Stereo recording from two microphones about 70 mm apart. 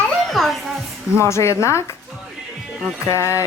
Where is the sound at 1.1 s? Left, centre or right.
Left.